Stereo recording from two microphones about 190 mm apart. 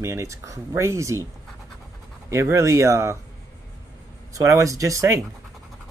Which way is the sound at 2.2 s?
15° right (ahead or behind).